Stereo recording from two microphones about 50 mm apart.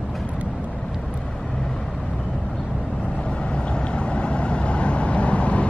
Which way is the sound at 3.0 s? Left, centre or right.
Left.